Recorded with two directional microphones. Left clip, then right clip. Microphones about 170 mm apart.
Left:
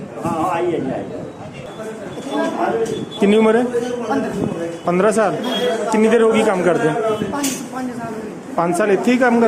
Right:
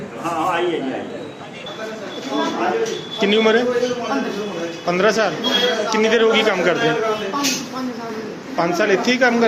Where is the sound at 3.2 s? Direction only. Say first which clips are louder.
Left 1 dB; 45° left (ahead or behind).